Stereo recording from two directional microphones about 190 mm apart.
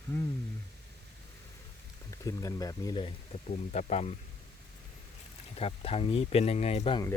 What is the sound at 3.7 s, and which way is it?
Speech, 35° left (ahead or behind).